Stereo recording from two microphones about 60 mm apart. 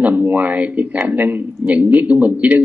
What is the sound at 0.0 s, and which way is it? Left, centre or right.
Speech, right.